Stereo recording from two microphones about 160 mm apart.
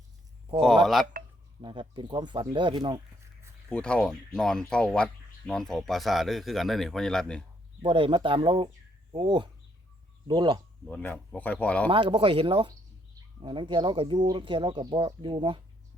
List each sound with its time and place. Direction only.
1.2 s a sound: 55° right (ahead or behind)
1.6 s speech: 30° right (ahead or behind)
3.7 s speech: 5° left (ahead or behind)
7.8 s speech: 35° right (ahead or behind)
10.8 s a man's voice: 10° left (ahead or behind)
11.9 s speech: 35° right (ahead or behind)